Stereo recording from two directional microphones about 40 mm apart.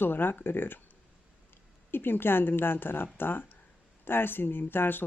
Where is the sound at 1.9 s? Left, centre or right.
Left.